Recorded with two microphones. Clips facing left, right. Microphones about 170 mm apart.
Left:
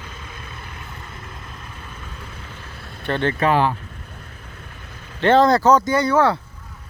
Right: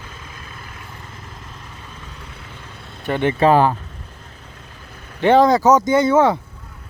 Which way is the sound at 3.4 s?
40° right (ahead or behind).